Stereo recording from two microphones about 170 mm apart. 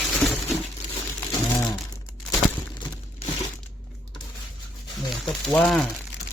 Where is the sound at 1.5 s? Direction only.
10° left (ahead or behind).